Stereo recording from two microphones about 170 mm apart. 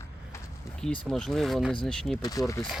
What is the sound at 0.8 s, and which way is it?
Speech, 5° left (ahead or behind).